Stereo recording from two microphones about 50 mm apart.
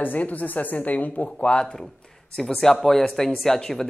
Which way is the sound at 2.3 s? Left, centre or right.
Centre.